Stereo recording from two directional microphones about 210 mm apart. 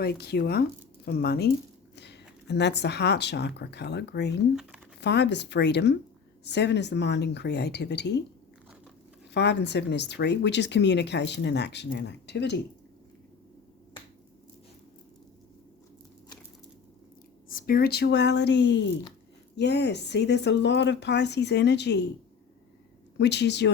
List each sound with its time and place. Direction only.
0.0 s speech: 50° left (ahead or behind)
9.3 s speech: 55° left (ahead or behind)
17.5 s speech: 45° left (ahead or behind)
23.1 s speech: 55° left (ahead or behind)